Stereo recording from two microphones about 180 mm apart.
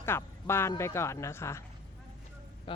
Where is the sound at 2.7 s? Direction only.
25° left (ahead or behind).